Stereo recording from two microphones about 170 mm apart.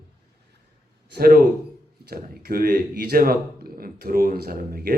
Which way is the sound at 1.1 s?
65° right (ahead or behind).